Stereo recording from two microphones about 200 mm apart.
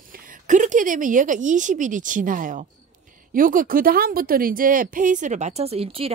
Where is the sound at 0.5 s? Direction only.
40° right (ahead or behind).